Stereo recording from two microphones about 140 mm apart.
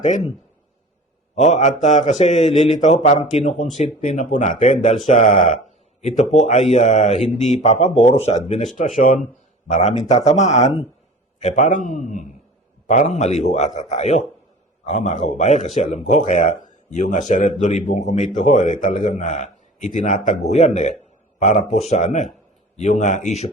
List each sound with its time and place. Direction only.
0.0 s a man's voice: 60° left (ahead or behind)
1.4 s a man's voice: 55° left (ahead or behind)
6.0 s a man's voice: 50° left (ahead or behind)